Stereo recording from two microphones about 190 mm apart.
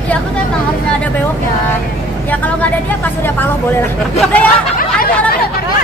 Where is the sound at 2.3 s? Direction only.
10° left (ahead or behind).